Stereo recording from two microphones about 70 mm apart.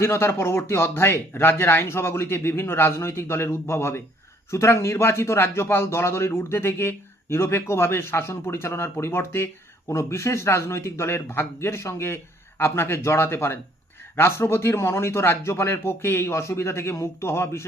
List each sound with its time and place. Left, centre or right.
0.0 s a man's voice: left